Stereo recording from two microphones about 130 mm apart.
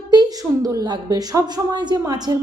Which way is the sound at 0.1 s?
30° right (ahead or behind).